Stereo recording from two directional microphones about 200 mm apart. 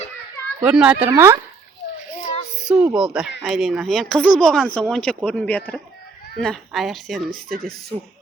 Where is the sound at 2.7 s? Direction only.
5° right (ahead or behind).